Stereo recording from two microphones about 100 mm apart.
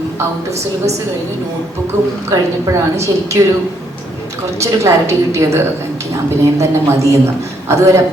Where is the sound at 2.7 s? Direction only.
30° right (ahead or behind).